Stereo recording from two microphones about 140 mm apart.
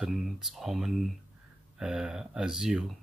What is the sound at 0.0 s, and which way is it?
Speech, centre (ahead or behind).